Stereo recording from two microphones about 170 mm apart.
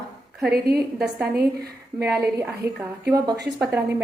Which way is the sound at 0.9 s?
5° right (ahead or behind).